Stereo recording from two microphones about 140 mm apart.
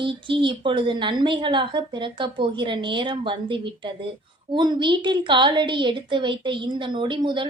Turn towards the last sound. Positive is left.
turn(degrees=-35)  # may be behind; listen again after turning